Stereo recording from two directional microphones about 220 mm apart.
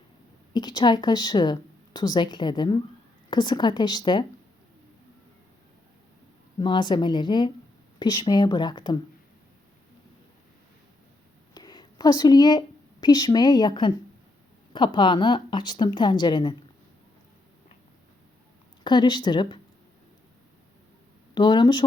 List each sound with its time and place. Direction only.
0.5 s a woman's voice: 20° left (ahead or behind)
6.6 s a woman's voice: 20° left (ahead or behind)
11.5 s a woman's voice: 20° left (ahead or behind)
18.8 s a woman's voice: 20° left (ahead or behind)
21.3 s a woman's voice: 20° left (ahead or behind)